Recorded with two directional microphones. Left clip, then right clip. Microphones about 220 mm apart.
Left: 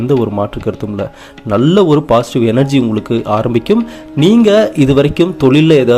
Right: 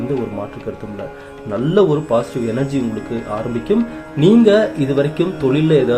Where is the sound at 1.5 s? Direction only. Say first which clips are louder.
Left 5 dB; 30° left (ahead or behind).